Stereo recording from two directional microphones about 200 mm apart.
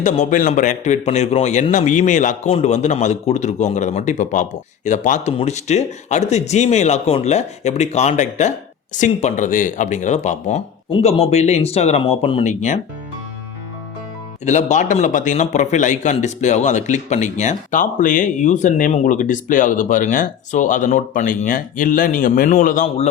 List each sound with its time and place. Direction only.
0.0 s a man's voice: 40° left (ahead or behind)
14.4 s a man's voice: 35° left (ahead or behind)